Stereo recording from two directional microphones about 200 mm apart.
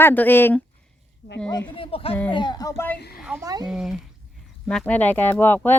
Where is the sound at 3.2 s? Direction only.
5° right (ahead or behind).